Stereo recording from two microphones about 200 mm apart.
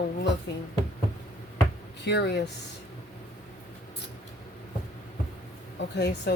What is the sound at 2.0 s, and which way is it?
Speech, 60° left (ahead or behind).